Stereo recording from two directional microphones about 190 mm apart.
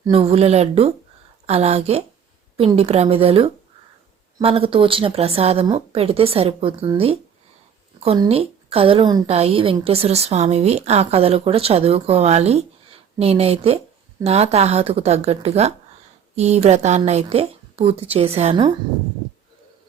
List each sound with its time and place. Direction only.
0.1 s a woman's voice: 30° right (ahead or behind)